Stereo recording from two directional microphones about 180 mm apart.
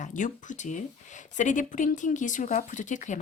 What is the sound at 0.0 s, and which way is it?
Speech, 45° left (ahead or behind).